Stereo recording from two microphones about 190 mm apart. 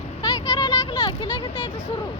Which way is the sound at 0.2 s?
20° left (ahead or behind).